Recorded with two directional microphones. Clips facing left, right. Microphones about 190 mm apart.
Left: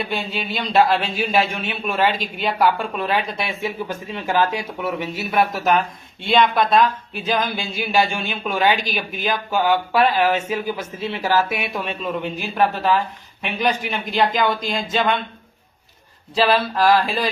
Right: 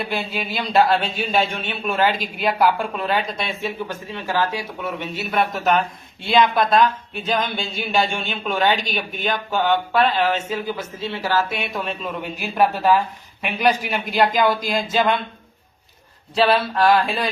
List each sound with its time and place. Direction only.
0.0 s speech: centre (ahead or behind)
4.1 s speech: 20° left (ahead or behind)
5.3 s speech: centre (ahead or behind)
16.3 s speech: centre (ahead or behind)